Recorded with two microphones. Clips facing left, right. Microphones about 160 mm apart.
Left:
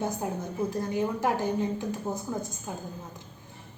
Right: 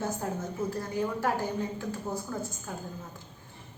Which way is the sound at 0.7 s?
20° left (ahead or behind).